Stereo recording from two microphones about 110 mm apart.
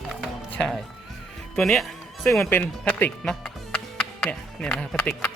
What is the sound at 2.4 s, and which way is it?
Speech, 20° left (ahead or behind).